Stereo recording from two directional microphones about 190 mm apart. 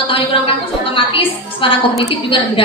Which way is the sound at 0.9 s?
30° left (ahead or behind).